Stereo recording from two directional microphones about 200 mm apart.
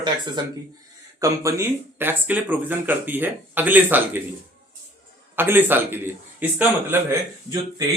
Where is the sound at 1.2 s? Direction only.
15° right (ahead or behind).